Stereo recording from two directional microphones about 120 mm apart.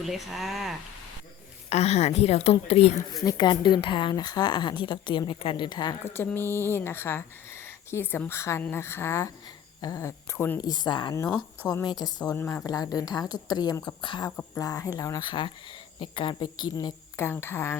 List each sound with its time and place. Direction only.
0.0 s speech: centre (ahead or behind)
1.7 s a woman's voice: 60° left (ahead or behind)
3.2 s a woman's voice: 40° left (ahead or behind)
6.1 s a woman's voice: 20° left (ahead or behind)
10.6 s a woman's voice: 35° left (ahead or behind)
14.3 s a woman's voice: 20° left (ahead or behind)
14.6 s a woman's voice: 30° left (ahead or behind)
17.2 s a woman's voice: 20° left (ahead or behind)